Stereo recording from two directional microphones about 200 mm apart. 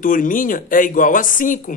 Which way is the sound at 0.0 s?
40° left (ahead or behind).